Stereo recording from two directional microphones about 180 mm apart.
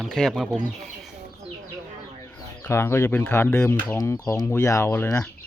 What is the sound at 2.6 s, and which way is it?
Speech, 15° left (ahead or behind).